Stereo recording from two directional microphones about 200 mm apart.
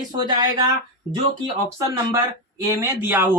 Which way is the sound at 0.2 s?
20° right (ahead or behind).